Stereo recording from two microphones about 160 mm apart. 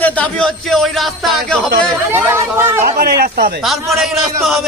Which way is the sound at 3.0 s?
75° right (ahead or behind).